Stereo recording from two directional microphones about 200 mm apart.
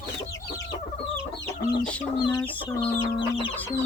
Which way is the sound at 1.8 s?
5° left (ahead or behind).